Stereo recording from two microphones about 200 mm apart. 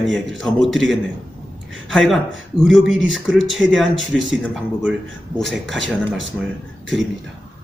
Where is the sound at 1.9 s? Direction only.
Centre (ahead or behind).